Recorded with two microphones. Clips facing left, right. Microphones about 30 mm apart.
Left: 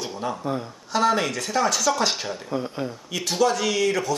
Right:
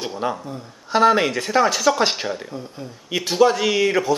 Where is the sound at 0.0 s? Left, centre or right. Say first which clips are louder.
Right 3 dB; right.